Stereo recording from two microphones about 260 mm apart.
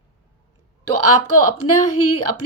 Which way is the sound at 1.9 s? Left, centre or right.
Left.